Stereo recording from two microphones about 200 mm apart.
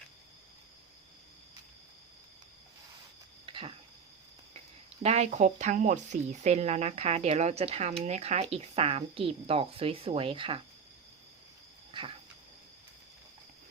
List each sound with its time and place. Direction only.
3.4 s a sound: 25° right (ahead or behind)
5.0 s speech: 35° right (ahead or behind)
11.9 s cricket: 25° right (ahead or behind)